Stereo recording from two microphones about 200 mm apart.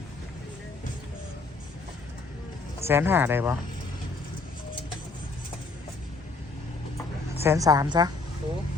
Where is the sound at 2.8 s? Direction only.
10° right (ahead or behind).